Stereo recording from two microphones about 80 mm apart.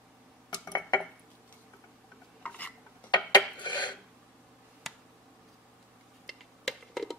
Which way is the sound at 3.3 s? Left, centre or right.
Left.